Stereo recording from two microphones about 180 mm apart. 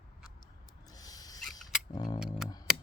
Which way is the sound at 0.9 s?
20° left (ahead or behind).